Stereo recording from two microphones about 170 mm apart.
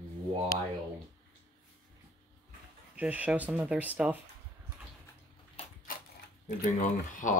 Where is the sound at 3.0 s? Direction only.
10° right (ahead or behind).